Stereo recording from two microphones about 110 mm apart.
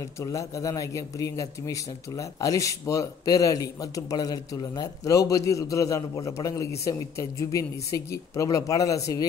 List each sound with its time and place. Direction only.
0.2 s a man's voice: 30° left (ahead or behind)